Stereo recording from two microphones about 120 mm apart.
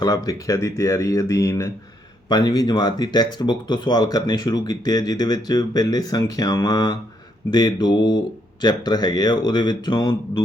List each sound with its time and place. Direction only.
0.0 s speech: 30° left (ahead or behind)